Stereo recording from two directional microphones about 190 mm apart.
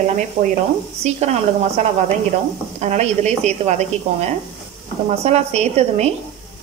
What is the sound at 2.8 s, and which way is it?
A woman's voice, 35° right (ahead or behind).